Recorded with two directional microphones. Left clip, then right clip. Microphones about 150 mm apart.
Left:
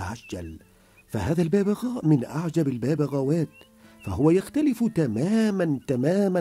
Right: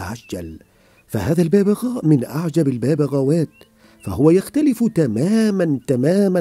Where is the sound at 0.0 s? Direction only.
40° right (ahead or behind).